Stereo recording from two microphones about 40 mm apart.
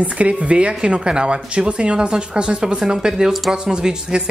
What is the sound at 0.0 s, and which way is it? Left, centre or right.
A woman's voice, right.